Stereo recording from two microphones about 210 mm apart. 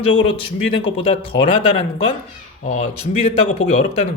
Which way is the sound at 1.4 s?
30° left (ahead or behind).